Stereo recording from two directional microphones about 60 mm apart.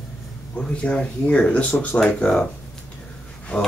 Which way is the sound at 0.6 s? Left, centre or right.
Centre.